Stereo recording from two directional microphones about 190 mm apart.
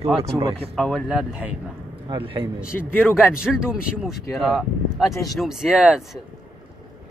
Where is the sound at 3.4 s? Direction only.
5° right (ahead or behind).